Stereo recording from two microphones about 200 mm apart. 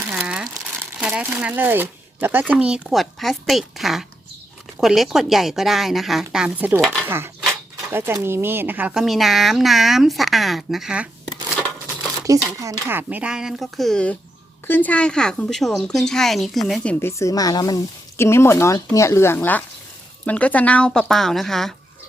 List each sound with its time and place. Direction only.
0.1 s crumpling: 5° right (ahead or behind)
1.0 s speech: 5° right (ahead or behind)
12.3 s speech: 15° right (ahead or behind); by 21.8 s centre (ahead or behind)